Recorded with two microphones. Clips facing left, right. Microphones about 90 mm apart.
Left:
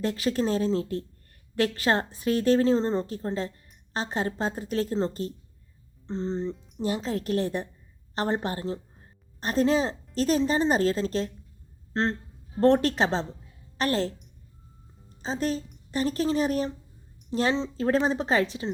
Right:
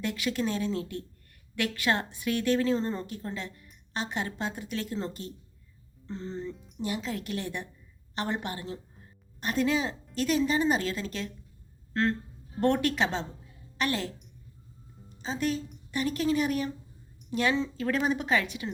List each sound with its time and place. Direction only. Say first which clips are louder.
0.0 s a woman's voice: left 4 dB; 35° left (ahead or behind)
11.9 s a sound: left 1 dB; 30° left (ahead or behind)
12.5 s a woman's voice: left 5 dB; 35° left (ahead or behind)
15.2 s a woman's voice: left 2 dB; 35° left (ahead or behind)